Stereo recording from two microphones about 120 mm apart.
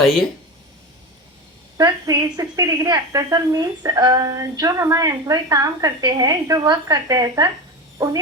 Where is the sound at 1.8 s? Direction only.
35° right (ahead or behind).